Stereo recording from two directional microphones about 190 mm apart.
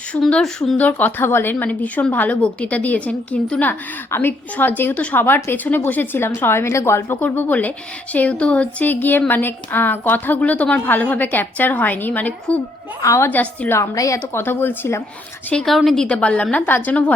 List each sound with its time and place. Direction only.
0.1 s a woman's voice: 5° left (ahead or behind)